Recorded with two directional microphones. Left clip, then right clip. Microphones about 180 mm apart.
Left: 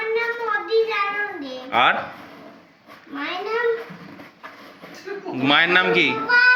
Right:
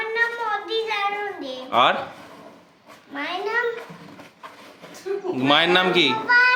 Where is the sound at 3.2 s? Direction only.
10° right (ahead or behind).